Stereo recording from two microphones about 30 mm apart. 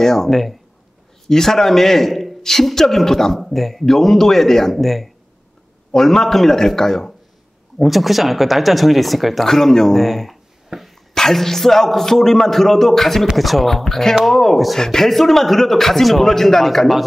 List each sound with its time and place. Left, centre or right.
0.0 s a man's voice: centre
0.3 s speech: centre
1.3 s a man's voice: centre
3.3 s a man's voice: centre
7.8 s speech: centre
9.9 s speech: centre
10.7 s speech: centre
11.1 s a man's voice: centre
14.8 s a man's voice: centre